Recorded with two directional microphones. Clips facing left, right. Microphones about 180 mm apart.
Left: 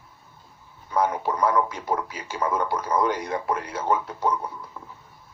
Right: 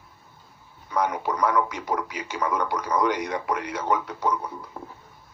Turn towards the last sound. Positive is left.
turn(degrees=-55)  # may be behind; listen again after turning